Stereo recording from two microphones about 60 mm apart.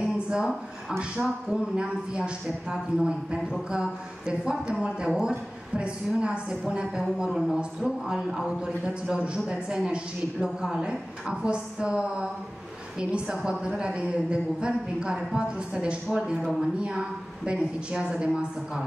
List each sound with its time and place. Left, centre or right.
0.0 s a sound: centre
1.2 s speech: centre
10.4 s speech: centre
13.5 s speech: centre